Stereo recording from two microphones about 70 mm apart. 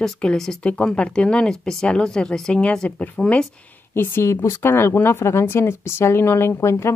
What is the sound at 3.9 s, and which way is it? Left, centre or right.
Speech, left.